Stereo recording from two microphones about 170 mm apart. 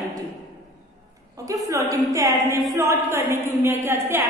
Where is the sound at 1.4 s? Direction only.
20° right (ahead or behind).